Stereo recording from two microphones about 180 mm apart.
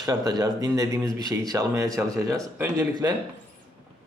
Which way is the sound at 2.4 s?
20° right (ahead or behind).